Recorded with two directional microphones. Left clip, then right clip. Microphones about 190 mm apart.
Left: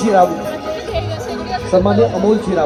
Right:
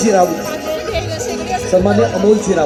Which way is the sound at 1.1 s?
55° right (ahead or behind).